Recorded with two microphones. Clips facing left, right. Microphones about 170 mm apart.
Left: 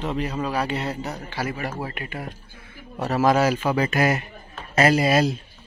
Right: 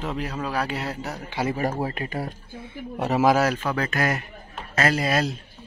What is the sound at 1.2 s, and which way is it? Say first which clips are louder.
Speech: right 5 dB; 20° right (ahead or behind).